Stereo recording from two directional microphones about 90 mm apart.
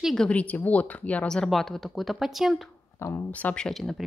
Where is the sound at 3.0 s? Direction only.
30° left (ahead or behind).